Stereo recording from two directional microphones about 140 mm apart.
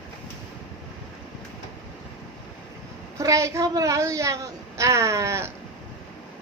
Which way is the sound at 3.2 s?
20° right (ahead or behind).